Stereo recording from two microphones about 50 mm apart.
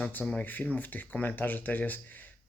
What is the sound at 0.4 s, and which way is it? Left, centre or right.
Speech, left.